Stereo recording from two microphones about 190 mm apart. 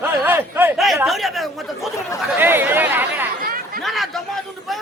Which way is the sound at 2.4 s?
10° right (ahead or behind).